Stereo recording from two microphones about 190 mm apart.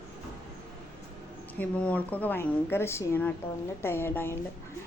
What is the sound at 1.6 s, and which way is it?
A woman's voice, 5° left (ahead or behind).